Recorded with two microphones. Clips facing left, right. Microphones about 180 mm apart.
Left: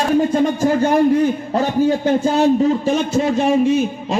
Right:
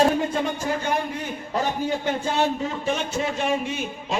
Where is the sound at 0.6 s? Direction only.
40° left (ahead or behind).